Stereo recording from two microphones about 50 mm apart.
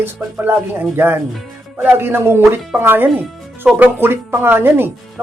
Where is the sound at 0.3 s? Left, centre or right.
Right.